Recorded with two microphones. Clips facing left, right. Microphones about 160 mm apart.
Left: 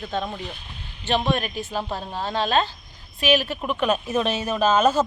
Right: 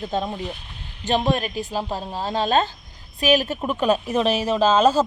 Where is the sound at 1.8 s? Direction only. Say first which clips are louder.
Right 2 dB; 15° right (ahead or behind).